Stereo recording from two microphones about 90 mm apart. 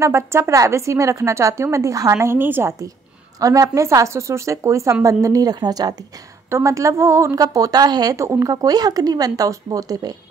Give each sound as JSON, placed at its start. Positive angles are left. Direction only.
{"t": 0.0, "sound": "a woman's voice", "side_deg": -30}
{"t": 3.3, "sound": "a woman's voice", "side_deg": -40}